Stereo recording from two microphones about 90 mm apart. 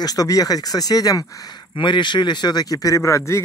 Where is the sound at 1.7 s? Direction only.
60° left (ahead or behind); by 3.4 s 35° left (ahead or behind).